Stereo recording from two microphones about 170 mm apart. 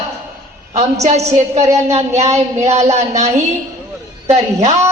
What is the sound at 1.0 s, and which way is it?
A woman's voice, 40° right (ahead or behind).